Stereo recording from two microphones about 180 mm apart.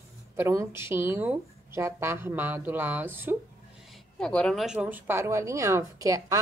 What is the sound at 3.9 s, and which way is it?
A woman's voice, 5° left (ahead or behind).